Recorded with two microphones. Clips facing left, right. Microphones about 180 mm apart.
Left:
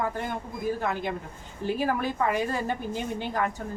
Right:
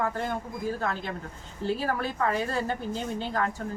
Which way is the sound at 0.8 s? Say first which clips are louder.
Left 2 dB; 15° left (ahead or behind).